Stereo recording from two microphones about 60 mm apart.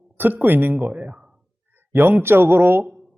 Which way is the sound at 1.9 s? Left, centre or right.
Right.